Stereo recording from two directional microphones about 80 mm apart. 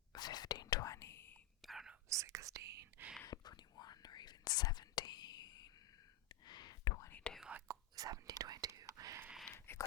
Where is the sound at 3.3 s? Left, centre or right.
Left.